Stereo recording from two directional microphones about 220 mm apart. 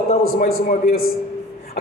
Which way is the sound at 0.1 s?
40° left (ahead or behind).